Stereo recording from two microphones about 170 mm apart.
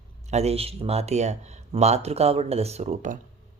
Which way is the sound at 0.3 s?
40° right (ahead or behind).